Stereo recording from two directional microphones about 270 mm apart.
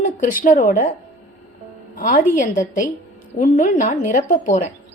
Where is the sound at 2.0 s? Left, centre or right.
Left.